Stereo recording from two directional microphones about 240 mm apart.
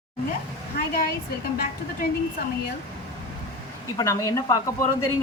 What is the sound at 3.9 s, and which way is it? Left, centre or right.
Speech, centre.